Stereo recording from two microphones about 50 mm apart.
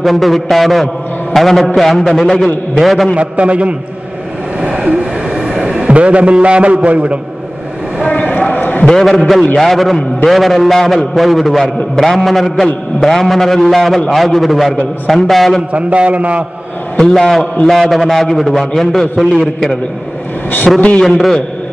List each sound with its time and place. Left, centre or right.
0.0 s a man's voice: centre
3.2 s a man's voice: right
4.6 s vehicle: centre
5.4 s a man's voice: centre
8.1 s clip-clop: left
9.6 s a man's voice: centre
15.7 s a man's voice: right
17.0 s a man's voice: centre
19.4 s a man's voice: centre
20.7 s a man's voice: centre